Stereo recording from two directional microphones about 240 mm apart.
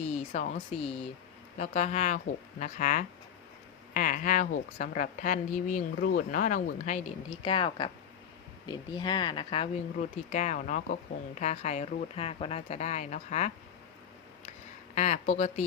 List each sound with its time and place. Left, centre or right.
0.0 s a woman's voice: left
14.9 s speech: left